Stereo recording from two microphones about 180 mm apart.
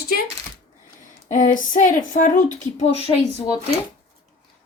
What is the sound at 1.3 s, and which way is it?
Speech, 45° left (ahead or behind).